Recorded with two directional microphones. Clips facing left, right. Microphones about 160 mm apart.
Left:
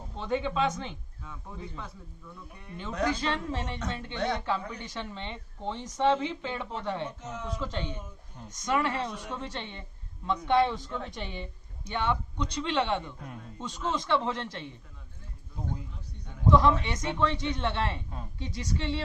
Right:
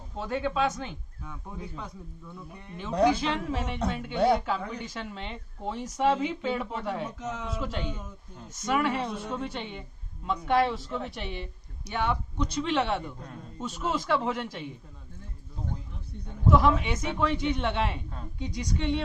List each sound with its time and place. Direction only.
0.2 s a woman's voice: 5° right (ahead or behind)
3.0 s a woman's voice: 10° right (ahead or behind)
7.0 s speech: 90° right
8.4 s a woman's voice: 10° right (ahead or behind)
16.5 s a woman's voice: 10° right (ahead or behind)